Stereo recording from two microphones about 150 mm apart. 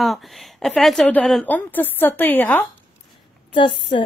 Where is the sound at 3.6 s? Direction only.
35° left (ahead or behind).